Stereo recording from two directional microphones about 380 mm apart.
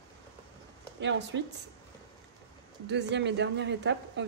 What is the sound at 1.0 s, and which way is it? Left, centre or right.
Speech, right.